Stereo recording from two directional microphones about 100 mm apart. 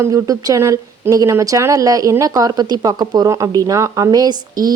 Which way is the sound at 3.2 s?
30° right (ahead or behind).